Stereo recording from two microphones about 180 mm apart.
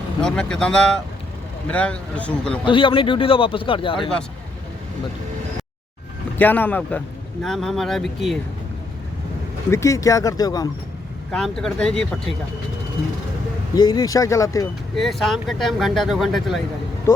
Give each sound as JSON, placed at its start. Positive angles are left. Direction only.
{"t": 0.2, "sound": "speech", "side_deg": 5}
{"t": 2.6, "sound": "a man's voice", "side_deg": 30}
{"t": 6.4, "sound": "speech", "side_deg": 10}
{"t": 9.6, "sound": "speech", "side_deg": 15}
{"t": 11.3, "sound": "speech", "side_deg": 5}
{"t": 13.7, "sound": "a man's voice", "side_deg": 20}
{"t": 14.9, "sound": "speech", "side_deg": 0}